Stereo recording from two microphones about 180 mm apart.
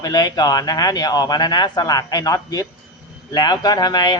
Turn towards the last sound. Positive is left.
turn(degrees=25)  # may be behind; listen again after turning